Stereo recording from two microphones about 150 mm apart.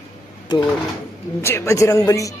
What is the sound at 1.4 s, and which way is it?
Speech, 20° left (ahead or behind).